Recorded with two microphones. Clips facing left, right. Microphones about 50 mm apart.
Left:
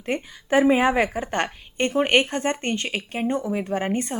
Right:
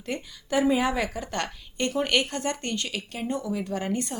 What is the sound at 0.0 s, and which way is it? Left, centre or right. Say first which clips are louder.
A woman's voice: left 6 dB; left.